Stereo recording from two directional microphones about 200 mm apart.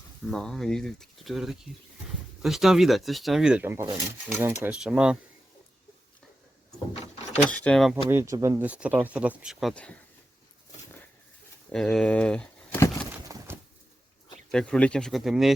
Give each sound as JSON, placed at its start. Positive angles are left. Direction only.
{"t": 0.3, "sound": "speech", "side_deg": 0}
{"t": 7.5, "sound": "speech", "side_deg": 5}
{"t": 8.1, "sound": "speech", "side_deg": -15}
{"t": 11.7, "sound": "speech", "side_deg": 0}
{"t": 13.5, "sound": "bird", "side_deg": -10}
{"t": 14.5, "sound": "speech", "side_deg": 5}